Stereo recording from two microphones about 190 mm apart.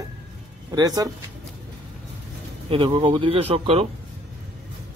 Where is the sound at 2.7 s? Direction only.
25° right (ahead or behind).